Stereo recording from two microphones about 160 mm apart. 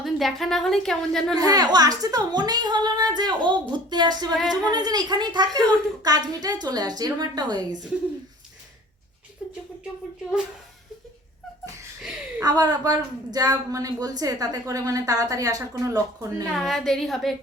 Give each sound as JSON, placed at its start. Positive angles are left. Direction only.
{"t": 0.0, "sound": "a woman's voice", "side_deg": 0}
{"t": 1.4, "sound": "a woman's voice", "side_deg": -20}
{"t": 12.4, "sound": "a woman's voice", "side_deg": -25}
{"t": 16.5, "sound": "a woman's voice", "side_deg": 0}